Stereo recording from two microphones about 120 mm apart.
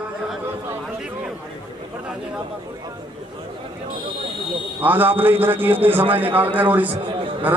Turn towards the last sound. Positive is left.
turn(degrees=-15)  # may be behind; listen again after turning